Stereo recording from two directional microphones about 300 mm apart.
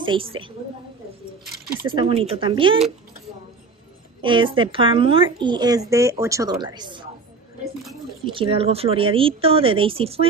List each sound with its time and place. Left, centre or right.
0.0 s a woman's voice: centre
1.6 s speech: centre
4.2 s speech: centre
8.3 s speech: centre